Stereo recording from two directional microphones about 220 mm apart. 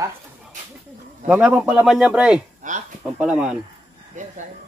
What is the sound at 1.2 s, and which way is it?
Speech, 5° right (ahead or behind).